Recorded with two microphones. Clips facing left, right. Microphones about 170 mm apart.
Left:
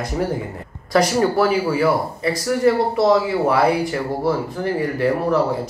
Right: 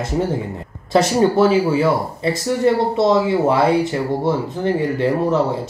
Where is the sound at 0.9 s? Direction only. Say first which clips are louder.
Right 2 dB; 25° right (ahead or behind).